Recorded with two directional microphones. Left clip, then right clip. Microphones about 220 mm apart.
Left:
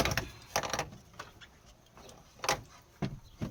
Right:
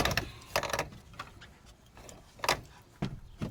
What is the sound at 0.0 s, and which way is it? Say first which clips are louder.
Mechanisms: right 1 dB; 30° right (ahead or behind).